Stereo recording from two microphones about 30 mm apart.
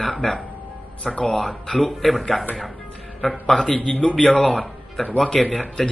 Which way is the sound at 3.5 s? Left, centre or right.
Left.